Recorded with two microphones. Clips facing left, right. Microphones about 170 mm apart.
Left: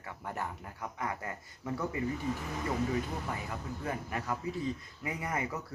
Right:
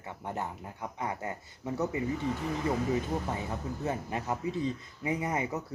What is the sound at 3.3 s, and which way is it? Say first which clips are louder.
A man's voice: right 4 dB; 25° right (ahead or behind).